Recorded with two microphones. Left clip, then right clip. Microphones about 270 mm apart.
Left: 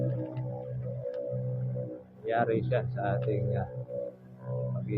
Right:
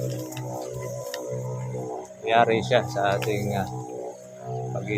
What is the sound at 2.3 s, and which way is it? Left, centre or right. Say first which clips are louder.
Speech: right 8 dB; centre.